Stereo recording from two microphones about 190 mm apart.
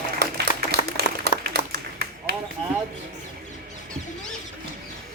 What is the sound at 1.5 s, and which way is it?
Clapping, 60° right (ahead or behind).